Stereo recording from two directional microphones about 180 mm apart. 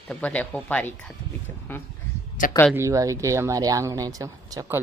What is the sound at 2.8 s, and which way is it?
A woman's voice, 15° right (ahead or behind).